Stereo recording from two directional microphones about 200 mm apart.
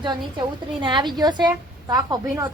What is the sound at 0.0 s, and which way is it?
A woman's voice, 25° right (ahead or behind).